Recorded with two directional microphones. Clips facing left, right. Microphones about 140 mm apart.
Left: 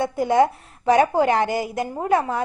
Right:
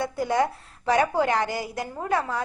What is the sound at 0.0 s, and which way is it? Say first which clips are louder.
A woman's voice: left 6 dB; 20° left (ahead or behind).